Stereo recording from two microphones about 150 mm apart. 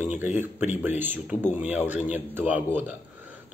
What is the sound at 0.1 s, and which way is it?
Speech, 50° left (ahead or behind).